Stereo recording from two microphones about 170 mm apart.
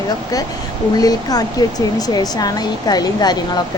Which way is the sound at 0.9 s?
20° left (ahead or behind).